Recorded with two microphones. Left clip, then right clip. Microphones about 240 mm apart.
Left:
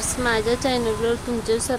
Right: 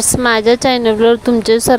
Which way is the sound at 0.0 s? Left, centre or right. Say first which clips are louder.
Right 10 dB; right.